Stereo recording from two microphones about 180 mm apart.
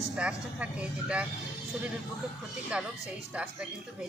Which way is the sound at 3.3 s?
5° right (ahead or behind).